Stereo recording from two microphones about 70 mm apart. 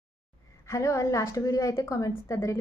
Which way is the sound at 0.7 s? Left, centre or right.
Left.